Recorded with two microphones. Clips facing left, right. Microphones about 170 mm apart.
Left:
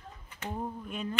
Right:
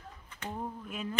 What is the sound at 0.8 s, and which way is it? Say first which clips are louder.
Speech: left 2 dB; 5° right (ahead or behind).